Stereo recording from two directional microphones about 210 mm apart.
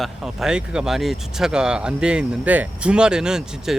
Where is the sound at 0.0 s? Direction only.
Centre (ahead or behind).